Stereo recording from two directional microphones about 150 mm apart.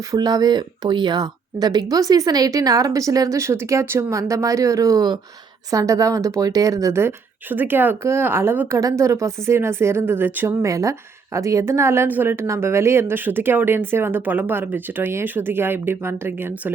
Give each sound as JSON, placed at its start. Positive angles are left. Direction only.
{"t": 0.1, "sound": "a woman's voice", "side_deg": -25}